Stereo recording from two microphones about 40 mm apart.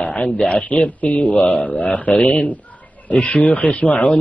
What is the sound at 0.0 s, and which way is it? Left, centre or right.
A man's voice, left.